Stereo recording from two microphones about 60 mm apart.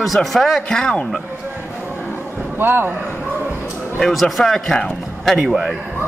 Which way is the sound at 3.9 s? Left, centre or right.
Centre.